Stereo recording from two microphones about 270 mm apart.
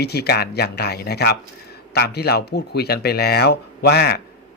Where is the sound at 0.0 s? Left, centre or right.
Left.